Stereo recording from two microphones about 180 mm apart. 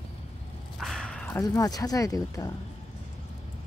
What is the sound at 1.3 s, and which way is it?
Speech, 20° left (ahead or behind).